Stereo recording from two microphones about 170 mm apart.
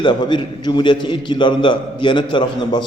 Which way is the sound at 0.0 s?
25° left (ahead or behind).